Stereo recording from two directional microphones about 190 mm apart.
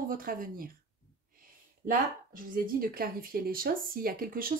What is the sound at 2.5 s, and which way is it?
Speech, 50° right (ahead or behind).